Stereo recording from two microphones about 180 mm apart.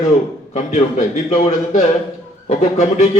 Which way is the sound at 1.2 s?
35° left (ahead or behind).